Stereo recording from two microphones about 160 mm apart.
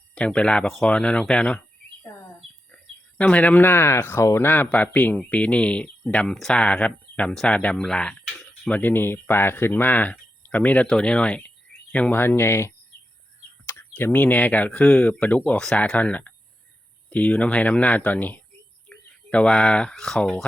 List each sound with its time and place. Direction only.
0.1 s speech: 5° left (ahead or behind)
2.7 s speech: 10° left (ahead or behind)